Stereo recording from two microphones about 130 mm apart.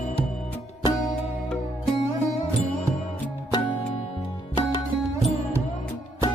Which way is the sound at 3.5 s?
40° left (ahead or behind).